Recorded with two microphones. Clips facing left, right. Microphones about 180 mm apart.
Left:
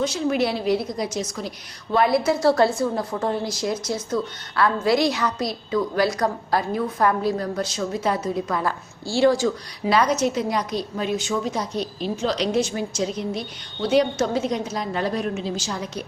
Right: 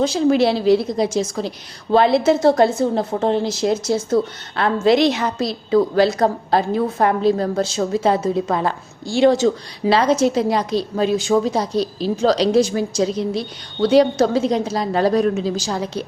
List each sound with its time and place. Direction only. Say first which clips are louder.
0.0 s a woman's voice: right 6 dB; 30° right (ahead or behind)